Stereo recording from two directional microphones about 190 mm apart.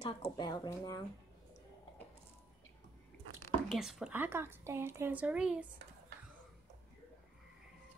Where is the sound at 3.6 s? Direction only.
Centre (ahead or behind).